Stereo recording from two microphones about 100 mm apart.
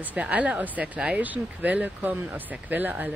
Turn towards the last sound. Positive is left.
turn(degrees=-20)  # may be behind; listen again after turning